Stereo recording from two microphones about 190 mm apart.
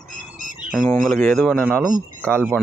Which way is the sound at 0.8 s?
5° left (ahead or behind).